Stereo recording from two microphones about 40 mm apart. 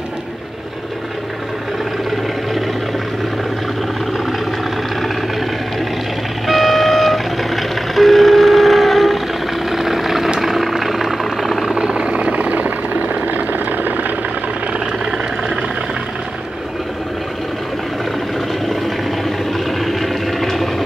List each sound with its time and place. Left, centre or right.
6.4 s train: centre
9.7 s vehicle: centre
11.7 s a sound: right
19.2 s vehicle: centre